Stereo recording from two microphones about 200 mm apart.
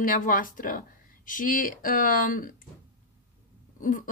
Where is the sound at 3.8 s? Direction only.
45° left (ahead or behind).